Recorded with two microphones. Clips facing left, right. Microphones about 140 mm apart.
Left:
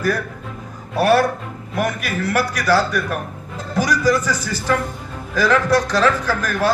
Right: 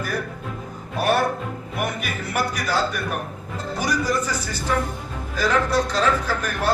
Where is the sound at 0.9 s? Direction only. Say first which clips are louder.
Left 5 dB; 90° left.